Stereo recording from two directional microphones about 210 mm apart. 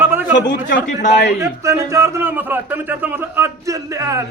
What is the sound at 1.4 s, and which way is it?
A man's voice, 15° right (ahead or behind).